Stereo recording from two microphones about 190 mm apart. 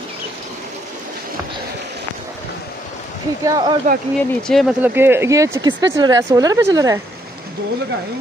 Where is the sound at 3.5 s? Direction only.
25° right (ahead or behind).